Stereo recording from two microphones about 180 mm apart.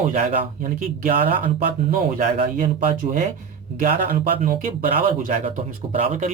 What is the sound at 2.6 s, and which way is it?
Speech, 50° right (ahead or behind).